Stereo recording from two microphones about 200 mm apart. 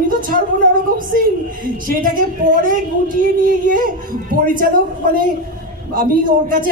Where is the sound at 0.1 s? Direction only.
45° right (ahead or behind).